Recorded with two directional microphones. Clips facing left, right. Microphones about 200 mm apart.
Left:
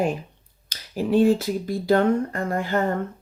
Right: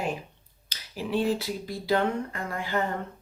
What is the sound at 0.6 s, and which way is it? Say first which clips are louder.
Speech: left 9 dB; 45° left (ahead or behind).